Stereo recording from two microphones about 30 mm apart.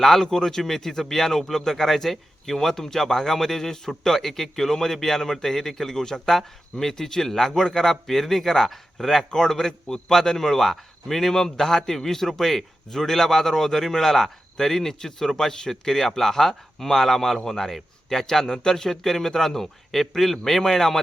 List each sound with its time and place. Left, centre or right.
0.0 s a man's voice: centre
18.4 s a man's voice: left